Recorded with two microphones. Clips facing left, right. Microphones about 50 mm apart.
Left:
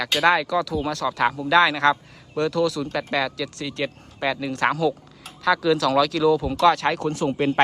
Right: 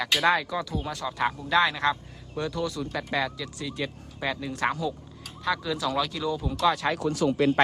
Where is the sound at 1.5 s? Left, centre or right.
Left.